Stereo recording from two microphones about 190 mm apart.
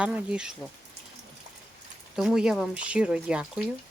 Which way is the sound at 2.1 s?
5° right (ahead or behind).